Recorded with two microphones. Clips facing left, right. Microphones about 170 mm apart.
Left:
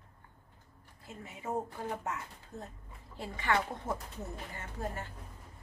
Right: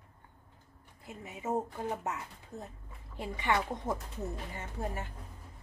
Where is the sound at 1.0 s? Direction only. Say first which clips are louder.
Right 3 dB; 20° right (ahead or behind).